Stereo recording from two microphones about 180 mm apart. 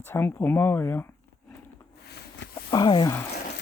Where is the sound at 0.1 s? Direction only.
10° left (ahead or behind).